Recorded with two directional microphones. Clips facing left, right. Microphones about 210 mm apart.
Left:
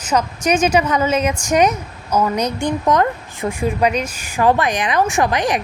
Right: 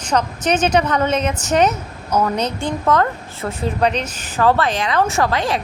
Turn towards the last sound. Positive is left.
turn(degrees=15)  # may be behind; listen again after turning